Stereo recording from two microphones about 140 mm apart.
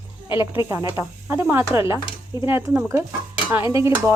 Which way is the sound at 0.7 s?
20° right (ahead or behind).